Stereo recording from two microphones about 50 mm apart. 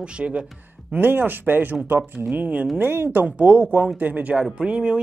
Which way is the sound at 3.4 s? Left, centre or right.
Right.